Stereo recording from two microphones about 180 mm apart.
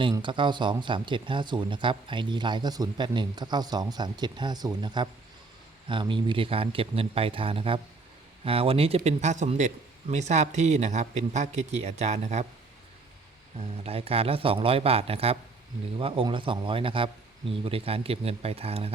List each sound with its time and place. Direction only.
0.0 s a man's voice: 25° right (ahead or behind)
13.6 s a man's voice: 35° right (ahead or behind)